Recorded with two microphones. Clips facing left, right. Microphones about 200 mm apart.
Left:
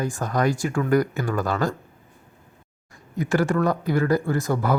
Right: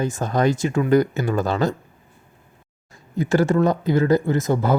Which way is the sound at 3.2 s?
25° right (ahead or behind).